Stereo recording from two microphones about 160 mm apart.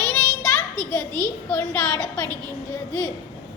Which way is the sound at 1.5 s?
10° left (ahead or behind).